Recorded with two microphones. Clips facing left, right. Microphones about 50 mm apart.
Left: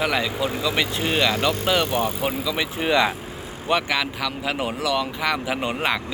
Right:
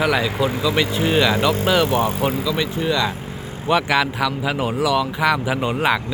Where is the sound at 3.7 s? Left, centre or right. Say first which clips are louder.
Right 4 dB; centre.